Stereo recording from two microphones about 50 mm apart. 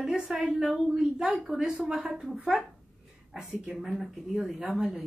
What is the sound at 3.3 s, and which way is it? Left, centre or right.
Speech, centre.